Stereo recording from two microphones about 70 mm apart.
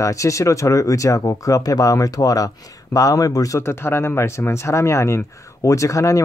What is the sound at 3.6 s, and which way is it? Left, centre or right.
Speech, left.